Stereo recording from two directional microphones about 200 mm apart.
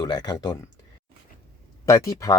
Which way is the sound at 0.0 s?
20° left (ahead or behind).